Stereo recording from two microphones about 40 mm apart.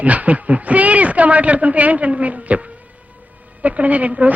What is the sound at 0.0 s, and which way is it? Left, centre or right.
A woman's voice, right.